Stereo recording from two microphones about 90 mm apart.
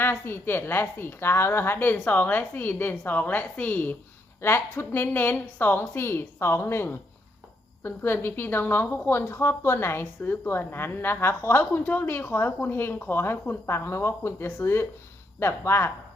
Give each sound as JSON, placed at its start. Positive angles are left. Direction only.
{"t": 0.0, "sound": "a woman's voice", "side_deg": 25}